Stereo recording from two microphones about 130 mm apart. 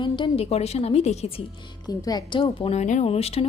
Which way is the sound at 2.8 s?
70° left (ahead or behind).